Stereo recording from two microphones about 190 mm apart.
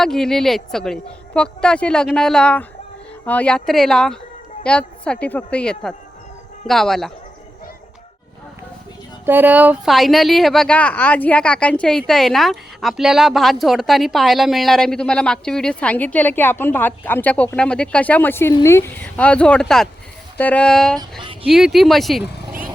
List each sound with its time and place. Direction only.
0.0 s speech: centre (ahead or behind)
9.2 s speech: 10° right (ahead or behind)
21.0 s speech: 25° right (ahead or behind)
21.5 s speech: centre (ahead or behind)